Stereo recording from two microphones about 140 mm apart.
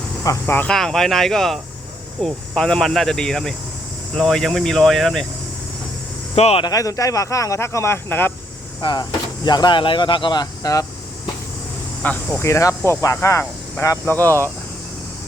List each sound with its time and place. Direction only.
0.3 s speech: 15° left (ahead or behind)
0.7 s speech: 5° left (ahead or behind)
6.3 s speech: 45° left (ahead or behind)
6.7 s speech: 25° left (ahead or behind)
8.8 s speech: 30° left (ahead or behind)
12.0 s speech: 10° left (ahead or behind)